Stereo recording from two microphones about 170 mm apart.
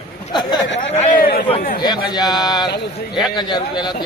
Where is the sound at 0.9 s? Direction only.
45° left (ahead or behind).